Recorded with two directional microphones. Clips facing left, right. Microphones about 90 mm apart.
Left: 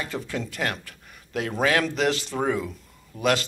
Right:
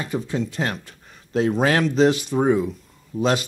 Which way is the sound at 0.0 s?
25° right (ahead or behind).